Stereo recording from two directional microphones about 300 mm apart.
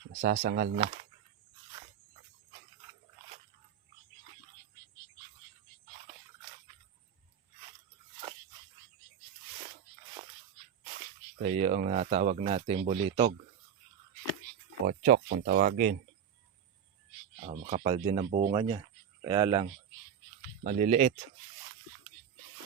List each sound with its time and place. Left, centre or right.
0.2 s speech: right
11.4 s speech: right
14.8 s speech: right
17.4 s speech: right
20.7 s speech: right